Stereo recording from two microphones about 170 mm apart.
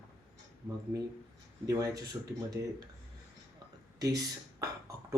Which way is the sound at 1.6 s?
20° right (ahead or behind).